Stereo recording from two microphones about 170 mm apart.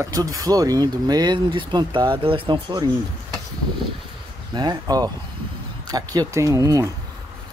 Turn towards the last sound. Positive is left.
turn(degrees=-20)  # may be behind; listen again after turning